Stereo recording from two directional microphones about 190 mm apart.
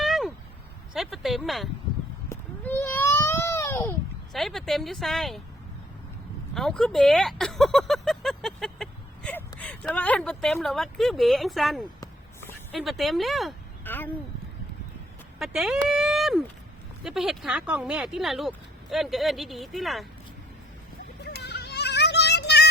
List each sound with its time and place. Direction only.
0.0 s a sound: centre (ahead or behind)
2.3 s baby cry: 10° left (ahead or behind)
4.3 s speech: centre (ahead or behind)
6.5 s speech: centre (ahead or behind)
11.9 s a sound: 10° left (ahead or behind)
12.7 s speech: centre (ahead or behind)
13.8 s speech: 10° left (ahead or behind)
15.4 s speech: 5° right (ahead or behind)
21.2 s child singing: 60° left (ahead or behind)